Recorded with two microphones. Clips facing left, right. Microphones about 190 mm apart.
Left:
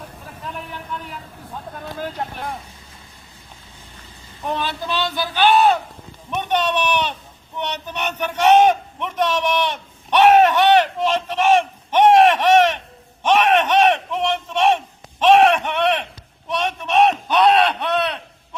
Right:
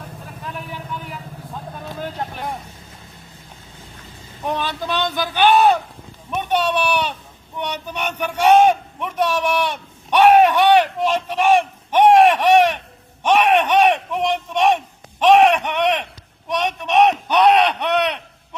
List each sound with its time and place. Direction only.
0.4 s speech: centre (ahead or behind)
4.4 s a man's voice: 15° right (ahead or behind)
13.2 s battle cry: 15° right (ahead or behind)
15.2 s a man's voice: 15° right (ahead or behind)